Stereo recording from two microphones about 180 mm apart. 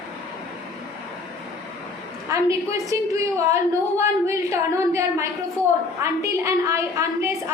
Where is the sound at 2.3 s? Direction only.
15° right (ahead or behind).